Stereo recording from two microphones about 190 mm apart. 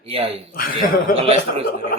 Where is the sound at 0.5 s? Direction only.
50° left (ahead or behind).